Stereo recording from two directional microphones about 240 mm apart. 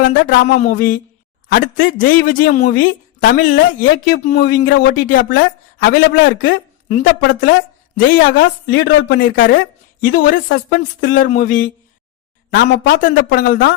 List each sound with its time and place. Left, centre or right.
0.1 s speech: left
8.1 s speech: left